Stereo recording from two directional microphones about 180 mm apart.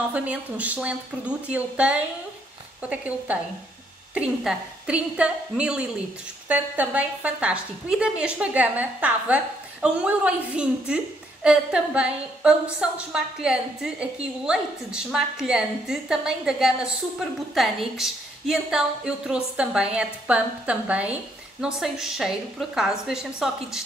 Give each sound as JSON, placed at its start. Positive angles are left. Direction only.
{"t": 0.1, "sound": "a woman's voice", "side_deg": -5}